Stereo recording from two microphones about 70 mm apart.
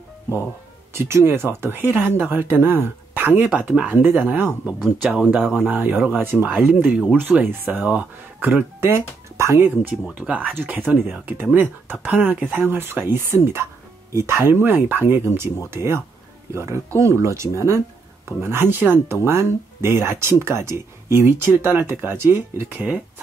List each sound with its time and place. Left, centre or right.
0.9 s speech: right
3.4 s speech: centre; by 9.7 s right
10.1 s speech: right
17.0 s speech: right